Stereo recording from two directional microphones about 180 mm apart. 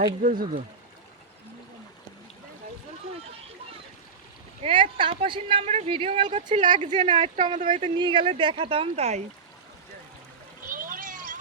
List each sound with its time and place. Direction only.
0.0 s speech: 50° right (ahead or behind)
4.6 s speech: 30° right (ahead or behind)
6.7 s speech: 40° right (ahead or behind)
7.9 s speech: 25° right (ahead or behind)
10.7 s a sound: 50° right (ahead or behind)